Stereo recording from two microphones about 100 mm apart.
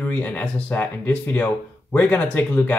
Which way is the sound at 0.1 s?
15° left (ahead or behind).